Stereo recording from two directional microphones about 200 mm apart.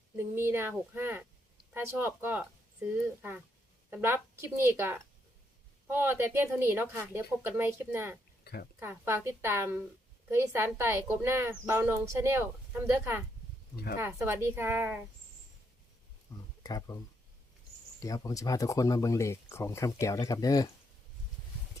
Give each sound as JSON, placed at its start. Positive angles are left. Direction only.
{"t": 0.2, "sound": "a woman's voice", "side_deg": -10}
{"t": 16.3, "sound": "a sound", "side_deg": 15}
{"t": 16.6, "sound": "speech", "side_deg": 20}
{"t": 18.0, "sound": "speech", "side_deg": 15}